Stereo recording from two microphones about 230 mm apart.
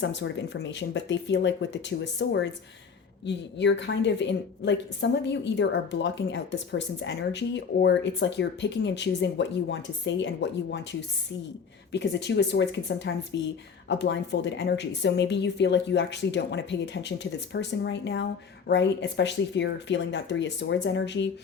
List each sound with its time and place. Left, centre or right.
0.0 s a woman's voice: left
11.9 s a woman's voice: left